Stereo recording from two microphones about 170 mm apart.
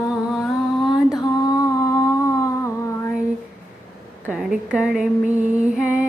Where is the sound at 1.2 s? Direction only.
20° left (ahead or behind).